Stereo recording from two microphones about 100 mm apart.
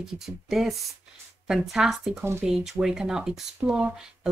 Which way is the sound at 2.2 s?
25° right (ahead or behind).